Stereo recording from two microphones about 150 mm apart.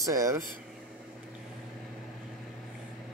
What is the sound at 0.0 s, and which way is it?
Speech, 20° right (ahead or behind).